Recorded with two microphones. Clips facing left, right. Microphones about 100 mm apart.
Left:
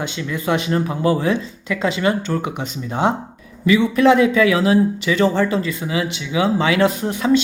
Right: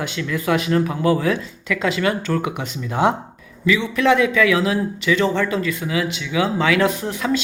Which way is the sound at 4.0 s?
35° left (ahead or behind).